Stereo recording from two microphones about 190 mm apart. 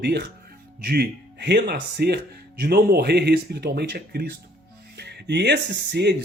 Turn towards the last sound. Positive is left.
turn(degrees=-60)  # may be behind; listen again after turning